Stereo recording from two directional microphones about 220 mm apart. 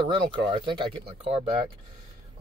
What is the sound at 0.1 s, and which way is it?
Speech, 20° right (ahead or behind).